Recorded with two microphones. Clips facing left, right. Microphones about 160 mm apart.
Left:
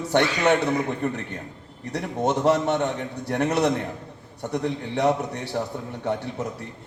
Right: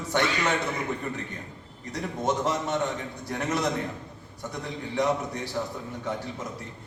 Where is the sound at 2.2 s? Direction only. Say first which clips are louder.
Left 6 dB; 70° left (ahead or behind).